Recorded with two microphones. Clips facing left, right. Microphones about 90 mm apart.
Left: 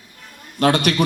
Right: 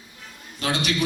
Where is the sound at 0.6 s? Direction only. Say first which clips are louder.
Left 8 dB; 55° left (ahead or behind).